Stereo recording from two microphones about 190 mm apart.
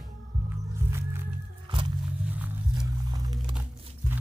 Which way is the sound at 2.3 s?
10° right (ahead or behind).